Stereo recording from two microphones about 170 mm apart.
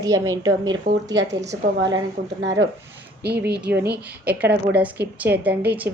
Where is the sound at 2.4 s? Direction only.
90° right.